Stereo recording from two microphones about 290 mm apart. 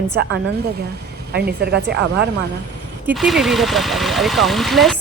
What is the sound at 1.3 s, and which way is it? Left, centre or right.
Speech, right.